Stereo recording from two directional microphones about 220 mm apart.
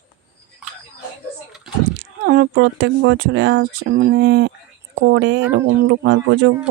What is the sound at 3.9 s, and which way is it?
Speech, 40° right (ahead or behind).